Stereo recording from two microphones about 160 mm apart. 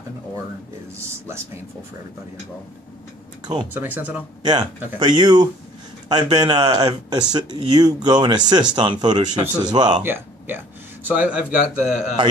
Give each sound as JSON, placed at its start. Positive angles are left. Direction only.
{"t": 3.7, "sound": "a man's voice", "side_deg": -10}
{"t": 4.4, "sound": "speech", "side_deg": -30}
{"t": 10.0, "sound": "a man's voice", "side_deg": -15}